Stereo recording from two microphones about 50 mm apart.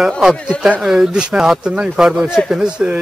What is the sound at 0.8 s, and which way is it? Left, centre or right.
Speech, centre.